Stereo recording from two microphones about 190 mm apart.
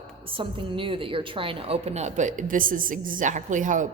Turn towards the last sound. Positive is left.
turn(degrees=-40)  # may be behind; listen again after turning